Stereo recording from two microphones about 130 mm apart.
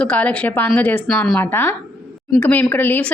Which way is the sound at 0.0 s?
10° left (ahead or behind).